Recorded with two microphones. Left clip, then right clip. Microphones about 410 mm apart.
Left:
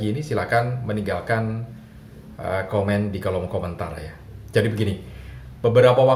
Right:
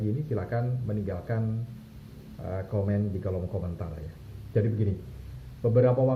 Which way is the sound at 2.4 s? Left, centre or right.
Centre.